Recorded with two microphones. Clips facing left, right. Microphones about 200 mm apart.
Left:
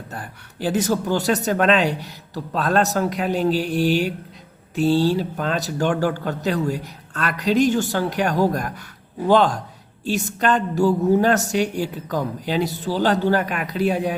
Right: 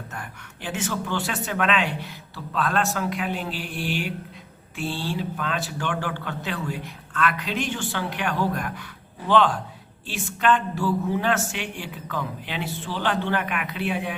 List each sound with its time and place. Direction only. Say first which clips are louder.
0.1 s speech: left 3 dB; 35° left (ahead or behind)